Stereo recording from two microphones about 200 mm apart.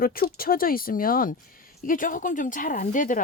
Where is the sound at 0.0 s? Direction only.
45° left (ahead or behind).